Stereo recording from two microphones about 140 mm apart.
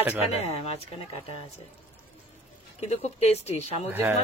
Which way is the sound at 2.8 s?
50° left (ahead or behind).